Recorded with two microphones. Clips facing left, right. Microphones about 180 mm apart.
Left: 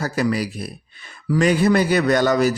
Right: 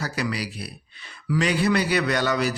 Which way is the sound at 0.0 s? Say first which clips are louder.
Left 7 dB; 45° left (ahead or behind).